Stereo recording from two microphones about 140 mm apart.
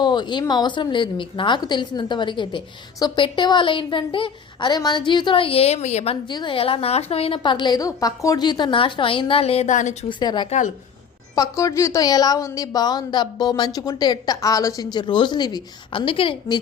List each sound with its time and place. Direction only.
0.0 s a woman's voice: 30° left (ahead or behind); by 6.1 s 50° left (ahead or behind)
6.2 s a woman's voice: 35° left (ahead or behind); by 10.1 s 60° left (ahead or behind)
10.1 s a woman's voice: 30° left (ahead or behind)